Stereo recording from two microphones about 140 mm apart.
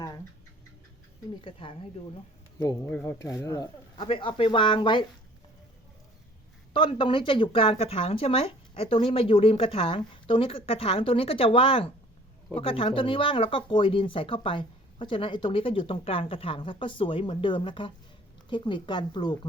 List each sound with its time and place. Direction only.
1.4 s speech: 40° left (ahead or behind)
2.9 s speech: 15° left (ahead or behind)
3.9 s speech: 40° left (ahead or behind)
6.7 s speech: 35° left (ahead or behind)